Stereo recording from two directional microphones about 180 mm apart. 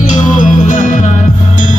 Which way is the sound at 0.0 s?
45° left (ahead or behind).